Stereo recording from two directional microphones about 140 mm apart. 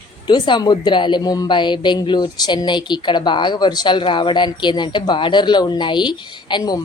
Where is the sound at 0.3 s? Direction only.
35° left (ahead or behind).